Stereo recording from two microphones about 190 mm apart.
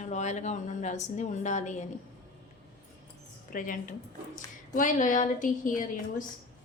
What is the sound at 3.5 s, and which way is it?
A woman's voice, 45° left (ahead or behind).